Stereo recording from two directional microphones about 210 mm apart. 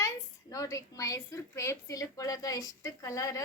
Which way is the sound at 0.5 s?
15° left (ahead or behind).